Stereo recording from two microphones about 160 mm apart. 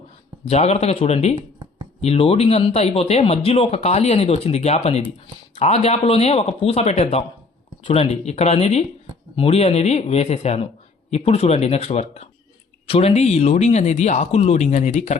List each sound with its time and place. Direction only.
0.4 s speech: 45° left (ahead or behind)
1.4 s a sound: 25° right (ahead or behind)
2.0 s speech: 40° left (ahead or behind)